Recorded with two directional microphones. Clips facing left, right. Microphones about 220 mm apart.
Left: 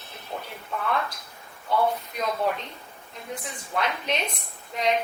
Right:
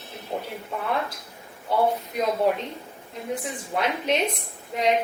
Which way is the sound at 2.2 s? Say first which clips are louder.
Right 5 dB; 10° right (ahead or behind).